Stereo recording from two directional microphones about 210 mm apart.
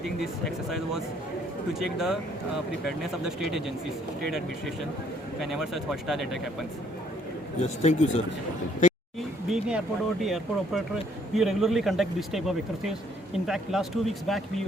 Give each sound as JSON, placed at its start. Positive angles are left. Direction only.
{"t": 0.2, "sound": "speech", "side_deg": 0}
{"t": 7.6, "sound": "speech", "side_deg": 30}
{"t": 8.8, "sound": "a sound", "side_deg": 35}
{"t": 9.5, "sound": "speech", "side_deg": -5}